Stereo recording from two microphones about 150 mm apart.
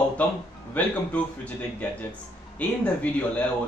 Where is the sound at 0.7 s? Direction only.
10° left (ahead or behind).